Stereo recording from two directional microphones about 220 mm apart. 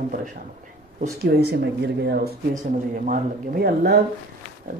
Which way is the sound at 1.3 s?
50° right (ahead or behind).